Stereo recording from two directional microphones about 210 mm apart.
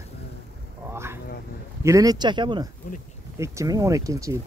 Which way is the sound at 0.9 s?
10° right (ahead or behind).